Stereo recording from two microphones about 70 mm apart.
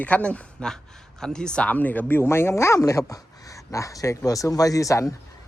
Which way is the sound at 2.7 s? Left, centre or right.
Left.